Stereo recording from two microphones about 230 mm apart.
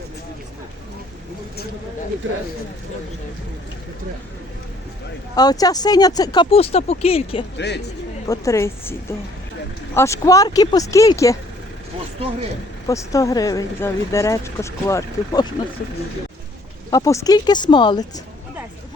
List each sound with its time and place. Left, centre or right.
2.2 s speech: right
5.3 s speech: centre
7.6 s a man's voice: left
8.3 s speech: centre
12.9 s speech: centre
16.9 s speech: centre